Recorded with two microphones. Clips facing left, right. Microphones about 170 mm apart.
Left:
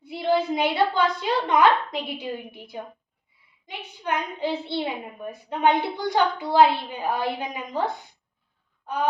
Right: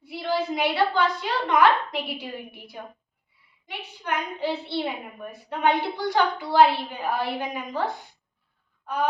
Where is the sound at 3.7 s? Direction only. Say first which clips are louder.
Left 2 dB; 20° left (ahead or behind).